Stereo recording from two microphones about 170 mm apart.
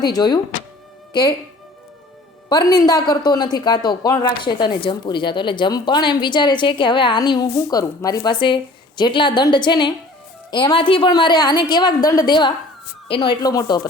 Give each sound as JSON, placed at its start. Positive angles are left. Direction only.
{"t": 0.0, "sound": "speech", "side_deg": 25}
{"t": 2.5, "sound": "speech", "side_deg": 25}